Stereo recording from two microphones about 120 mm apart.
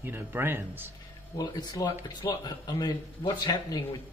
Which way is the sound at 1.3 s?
35° left (ahead or behind).